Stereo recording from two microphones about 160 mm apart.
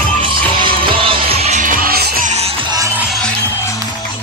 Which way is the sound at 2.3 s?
40° right (ahead or behind).